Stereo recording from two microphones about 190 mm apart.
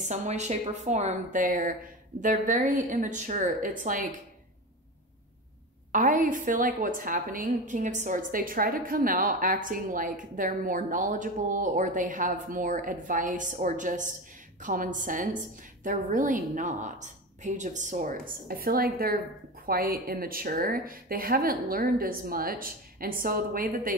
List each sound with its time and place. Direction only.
0.1 s a woman's voice: 40° right (ahead or behind)
5.9 s a woman's voice: 45° right (ahead or behind)